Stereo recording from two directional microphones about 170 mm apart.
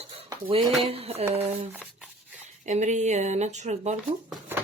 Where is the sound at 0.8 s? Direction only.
35° right (ahead or behind).